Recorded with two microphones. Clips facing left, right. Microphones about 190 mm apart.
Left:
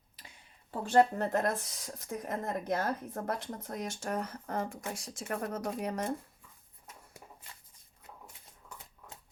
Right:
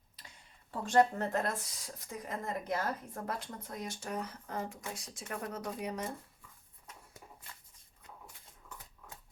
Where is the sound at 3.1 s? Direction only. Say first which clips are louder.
Left 4 dB; 45° left (ahead or behind).